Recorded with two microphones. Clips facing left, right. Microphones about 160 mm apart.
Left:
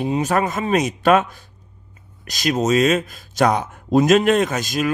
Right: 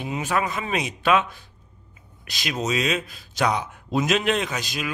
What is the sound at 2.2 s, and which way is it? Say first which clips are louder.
Speech: left 8 dB; 45° left (ahead or behind).